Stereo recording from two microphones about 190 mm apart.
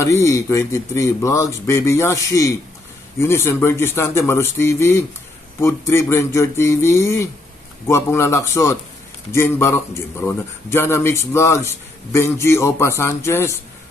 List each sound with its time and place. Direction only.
0.0 s a man's voice: 15° left (ahead or behind)